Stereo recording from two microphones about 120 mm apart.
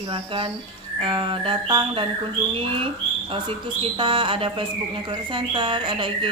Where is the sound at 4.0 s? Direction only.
45° right (ahead or behind).